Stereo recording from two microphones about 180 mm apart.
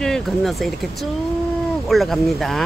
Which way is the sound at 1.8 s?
Centre (ahead or behind).